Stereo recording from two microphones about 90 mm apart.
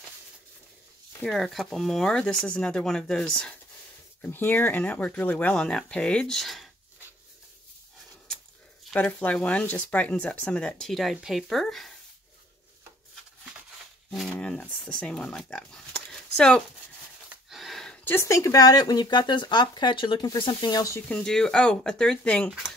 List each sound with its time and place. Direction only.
1.2 s speech: centre (ahead or behind)
4.2 s speech: 20° left (ahead or behind); by 6.7 s centre (ahead or behind)
8.9 s speech: 15° left (ahead or behind)
14.1 s speech: centre (ahead or behind)
14.4 s speech: 10° left (ahead or behind)
17.5 s a sound: centre (ahead or behind)
18.0 s speech: 30° left (ahead or behind); by 20.8 s 60° left (ahead or behind)
21.1 s speech: 5° left (ahead or behind)